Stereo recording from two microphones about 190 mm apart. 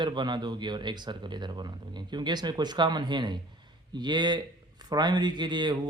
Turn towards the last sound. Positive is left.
turn(degrees=-25)  # may be behind; listen again after turning